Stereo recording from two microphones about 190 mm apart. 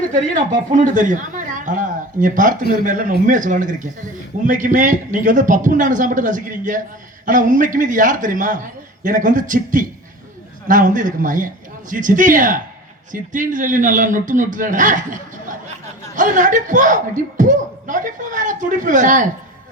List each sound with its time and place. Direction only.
0.7 s speech: 40° right (ahead or behind)